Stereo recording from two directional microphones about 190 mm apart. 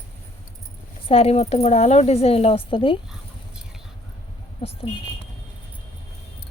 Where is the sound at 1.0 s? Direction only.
30° left (ahead or behind).